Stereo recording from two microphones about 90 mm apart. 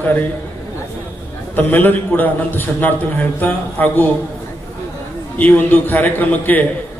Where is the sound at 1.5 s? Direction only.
20° left (ahead or behind).